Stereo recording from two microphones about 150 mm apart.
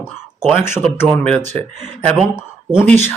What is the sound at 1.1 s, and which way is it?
Speech, 5° left (ahead or behind).